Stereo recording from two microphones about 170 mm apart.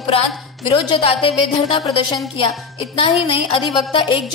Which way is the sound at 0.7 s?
30° left (ahead or behind).